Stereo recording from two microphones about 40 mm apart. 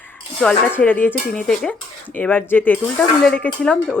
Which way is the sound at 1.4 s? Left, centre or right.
Centre.